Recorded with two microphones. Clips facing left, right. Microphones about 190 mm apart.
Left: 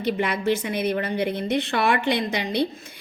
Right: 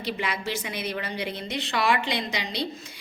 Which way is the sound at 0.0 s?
55° left (ahead or behind).